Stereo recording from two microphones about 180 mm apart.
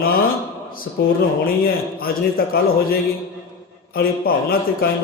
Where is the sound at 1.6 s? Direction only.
55° left (ahead or behind).